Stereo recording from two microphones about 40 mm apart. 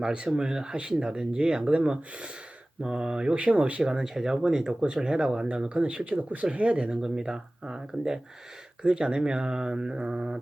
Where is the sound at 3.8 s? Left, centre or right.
Centre.